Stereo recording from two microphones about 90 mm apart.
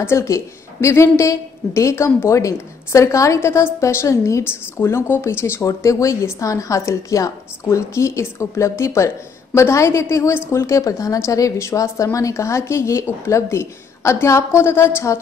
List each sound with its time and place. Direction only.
0.0 s speech: 30° left (ahead or behind)